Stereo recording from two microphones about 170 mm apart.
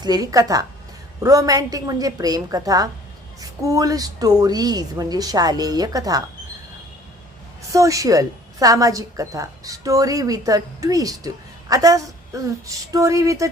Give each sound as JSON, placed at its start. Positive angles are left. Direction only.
{"t": 0.0, "sound": "a woman's voice", "side_deg": -20}
{"t": 7.7, "sound": "a woman's voice", "side_deg": -20}